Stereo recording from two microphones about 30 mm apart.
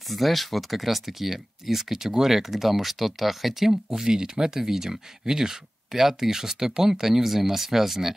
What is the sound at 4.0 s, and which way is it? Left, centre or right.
Speech, right.